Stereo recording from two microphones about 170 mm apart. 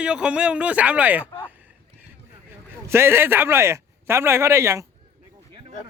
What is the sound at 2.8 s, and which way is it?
Speech, 15° right (ahead or behind).